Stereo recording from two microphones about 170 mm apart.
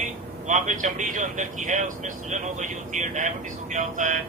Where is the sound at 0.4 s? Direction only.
45° right (ahead or behind).